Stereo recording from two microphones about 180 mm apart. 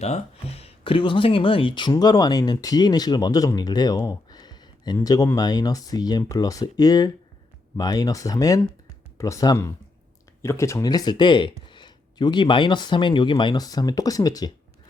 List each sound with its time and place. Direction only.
0.0 s speech: 35° left (ahead or behind); by 14.5 s 20° left (ahead or behind)